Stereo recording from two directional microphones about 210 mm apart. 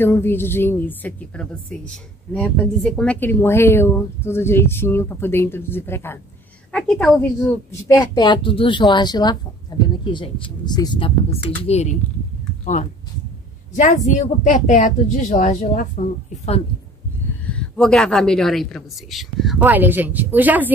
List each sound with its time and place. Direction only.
0.0 s a woman's voice: 10° left (ahead or behind)
8.0 s speech: 20° left (ahead or behind)
13.7 s a woman's voice: 35° left (ahead or behind)
17.5 s a woman's voice: 5° left (ahead or behind)